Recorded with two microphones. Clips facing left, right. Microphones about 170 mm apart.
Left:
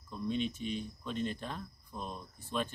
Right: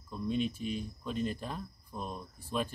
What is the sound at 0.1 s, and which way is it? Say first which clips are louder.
Speech: right 2 dB; 5° right (ahead or behind).